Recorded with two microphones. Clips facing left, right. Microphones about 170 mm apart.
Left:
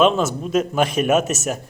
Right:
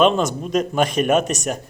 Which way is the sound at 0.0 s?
5° left (ahead or behind).